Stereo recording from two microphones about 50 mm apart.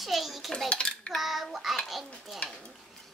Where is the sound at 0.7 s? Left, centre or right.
Centre.